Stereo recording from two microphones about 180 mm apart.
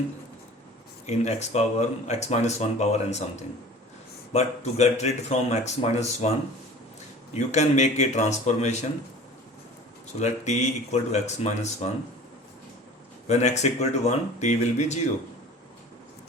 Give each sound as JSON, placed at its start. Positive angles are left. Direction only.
{"t": 1.0, "sound": "speech", "side_deg": 40}
{"t": 7.3, "sound": "speech", "side_deg": 40}
{"t": 10.2, "sound": "speech", "side_deg": 40}
{"t": 13.2, "sound": "speech", "side_deg": 40}